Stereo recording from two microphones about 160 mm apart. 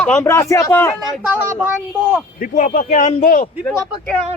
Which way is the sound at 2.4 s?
55° left (ahead or behind).